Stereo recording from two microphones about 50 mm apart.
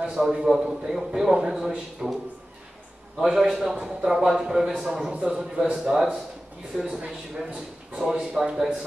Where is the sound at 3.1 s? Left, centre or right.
Centre.